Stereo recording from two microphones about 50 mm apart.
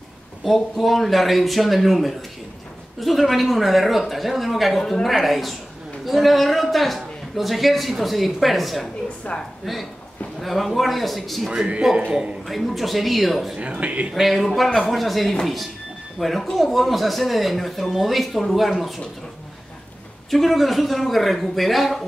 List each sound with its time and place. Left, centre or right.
0.4 s a man's voice: centre
9.3 s a woman's voice: centre
10.4 s speech: centre
11.4 s speech: centre
12.4 s speech: centre
13.6 s a man's voice: right
14.1 s speech: centre
14.4 s speech: centre
20.2 s speech: centre